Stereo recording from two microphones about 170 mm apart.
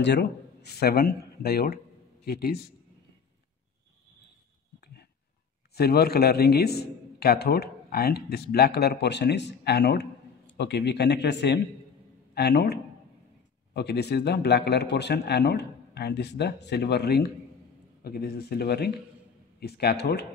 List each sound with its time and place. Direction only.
0.0 s a man's voice: 80° left
4.7 s a sound: 70° left (ahead or behind)
5.8 s a man's voice: 65° left (ahead or behind)
10.6 s speech: 90° left
12.4 s a man's voice: 70° left (ahead or behind)
13.7 s a man's voice: 75° left (ahead or behind)